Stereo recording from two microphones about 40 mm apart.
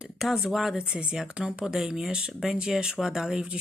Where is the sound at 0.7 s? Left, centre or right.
Right.